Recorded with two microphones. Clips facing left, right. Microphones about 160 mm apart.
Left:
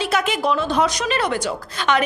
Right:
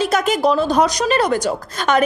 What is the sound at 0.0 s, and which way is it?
A woman's voice, 45° right (ahead or behind).